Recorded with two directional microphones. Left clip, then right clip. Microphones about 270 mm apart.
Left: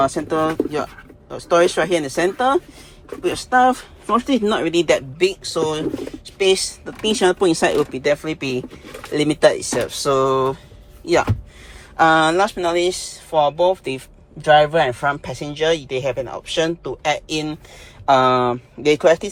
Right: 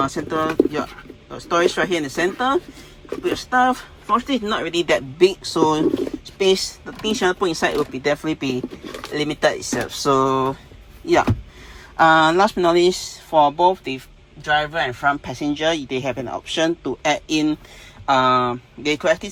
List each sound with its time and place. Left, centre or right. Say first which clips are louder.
0.0 s speech: left 3 dB; centre
4.9 s speech: right 2 dB; centre
6.2 s a sound: left 2 dB; centre
6.8 s speech: left 4 dB; centre
7.9 s speech: left 2 dB; centre
9.9 s speech: even; centre
11.9 s speech: even; centre
14.4 s speech: left 6 dB; centre
18.0 s speech: left 2 dB; centre